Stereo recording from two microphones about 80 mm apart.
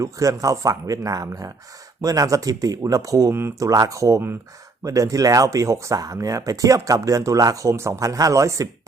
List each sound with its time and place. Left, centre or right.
0.0 s speech: right
3.3 s speech: right
3.7 s speech: right